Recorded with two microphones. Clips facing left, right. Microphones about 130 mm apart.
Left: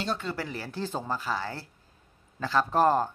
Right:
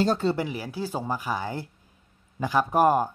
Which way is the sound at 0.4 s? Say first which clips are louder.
Right 4 dB; 10° right (ahead or behind).